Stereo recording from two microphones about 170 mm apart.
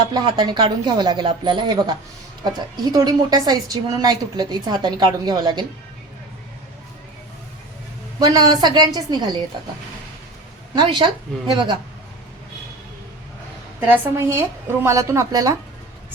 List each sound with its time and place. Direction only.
0.1 s a woman's voice: 25° right (ahead or behind)
8.2 s a woman's voice: 25° right (ahead or behind)
10.8 s a woman's voice: 30° right (ahead or behind)
13.7 s a woman's voice: 10° right (ahead or behind)